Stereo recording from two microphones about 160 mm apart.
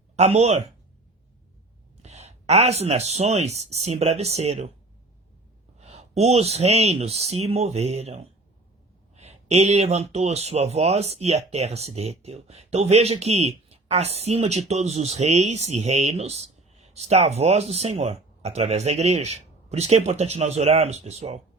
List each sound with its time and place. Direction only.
0.2 s speech: 40° right (ahead or behind)
2.0 s speech: 45° right (ahead or behind)
5.8 s speech: 40° right (ahead or behind)